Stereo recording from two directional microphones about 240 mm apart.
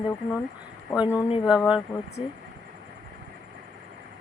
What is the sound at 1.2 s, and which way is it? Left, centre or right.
Speech, left.